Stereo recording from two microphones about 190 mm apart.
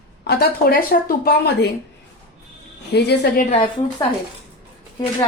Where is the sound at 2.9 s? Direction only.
60° left (ahead or behind).